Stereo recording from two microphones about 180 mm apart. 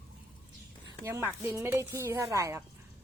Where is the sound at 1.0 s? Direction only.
10° right (ahead or behind).